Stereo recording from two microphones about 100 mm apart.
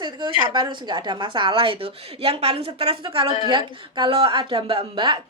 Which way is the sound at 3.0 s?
60° right (ahead or behind).